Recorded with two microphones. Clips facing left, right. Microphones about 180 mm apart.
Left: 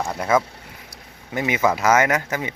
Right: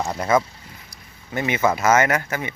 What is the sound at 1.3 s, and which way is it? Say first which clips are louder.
Speech: even; 15° left (ahead or behind).